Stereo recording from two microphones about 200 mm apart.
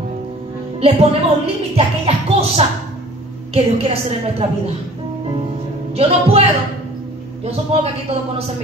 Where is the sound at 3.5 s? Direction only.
30° right (ahead or behind).